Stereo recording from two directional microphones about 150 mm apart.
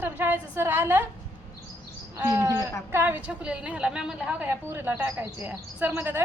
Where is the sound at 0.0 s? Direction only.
15° right (ahead or behind).